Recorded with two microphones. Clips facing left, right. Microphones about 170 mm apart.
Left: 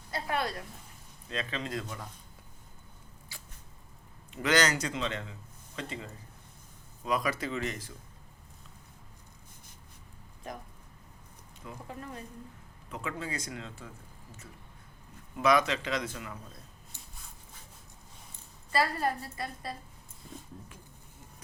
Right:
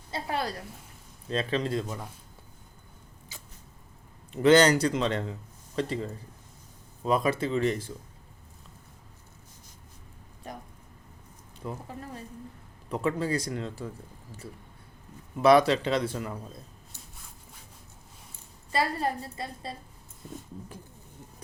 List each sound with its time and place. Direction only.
0.1 s a man's voice: 30° right (ahead or behind)
4.3 s speech: 30° right (ahead or behind)
7.0 s a woman's voice: 30° right (ahead or behind)
11.6 s a man's voice: 45° right (ahead or behind)
15.4 s a man's voice: 35° right (ahead or behind)
18.7 s a woman's voice: 25° right (ahead or behind)